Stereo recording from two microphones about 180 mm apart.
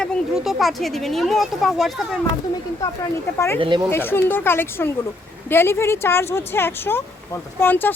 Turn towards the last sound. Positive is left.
turn(degrees=10)  # may be behind; listen again after turning